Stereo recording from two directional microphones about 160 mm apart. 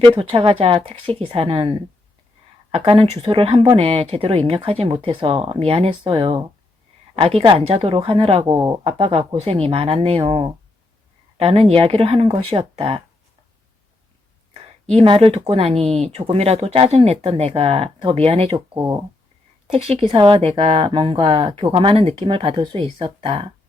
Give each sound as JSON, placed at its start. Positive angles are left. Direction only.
{"t": 0.0, "sound": "speech", "side_deg": -35}
{"t": 2.7, "sound": "speech", "side_deg": -35}
{"t": 14.8, "sound": "speech", "side_deg": -35}
{"t": 18.8, "sound": "speech", "side_deg": -20}
{"t": 19.7, "sound": "speech", "side_deg": -40}